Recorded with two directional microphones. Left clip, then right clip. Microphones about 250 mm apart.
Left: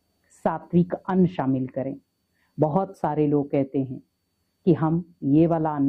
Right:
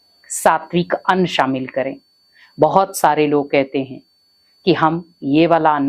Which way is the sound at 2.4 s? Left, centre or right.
Centre.